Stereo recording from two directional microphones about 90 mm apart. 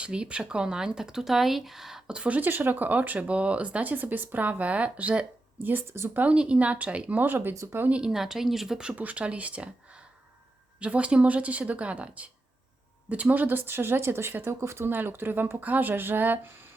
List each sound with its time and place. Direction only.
0.0 s speech: 10° right (ahead or behind)
5.6 s speech: 25° right (ahead or behind)
6.2 s speech: 10° right (ahead or behind)
7.5 s speech: 35° right (ahead or behind)
7.8 s speech: 15° right (ahead or behind)